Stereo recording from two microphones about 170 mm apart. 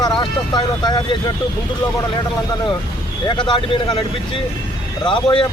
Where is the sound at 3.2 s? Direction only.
25° left (ahead or behind).